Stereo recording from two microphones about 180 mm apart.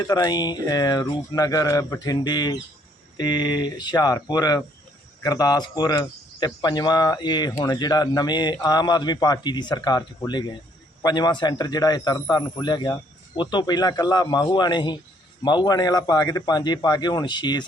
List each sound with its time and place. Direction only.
0.0 s a man's voice: 20° left (ahead or behind)